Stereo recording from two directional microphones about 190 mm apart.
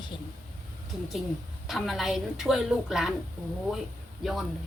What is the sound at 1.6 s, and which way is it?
A woman's voice, centre (ahead or behind).